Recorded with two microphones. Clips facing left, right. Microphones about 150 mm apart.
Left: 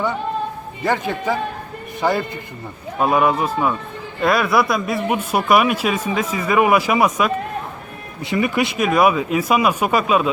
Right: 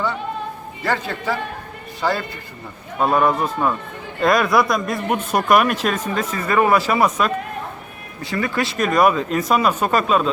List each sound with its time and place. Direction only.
0.9 s a man's voice: 15° left (ahead or behind)